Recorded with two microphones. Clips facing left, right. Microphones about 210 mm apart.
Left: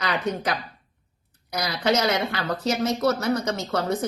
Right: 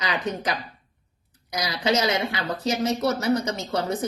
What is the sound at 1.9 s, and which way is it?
A woman's voice, 15° right (ahead or behind).